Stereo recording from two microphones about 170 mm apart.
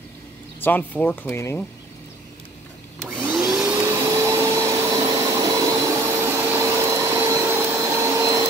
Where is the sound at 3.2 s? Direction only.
15° right (ahead or behind).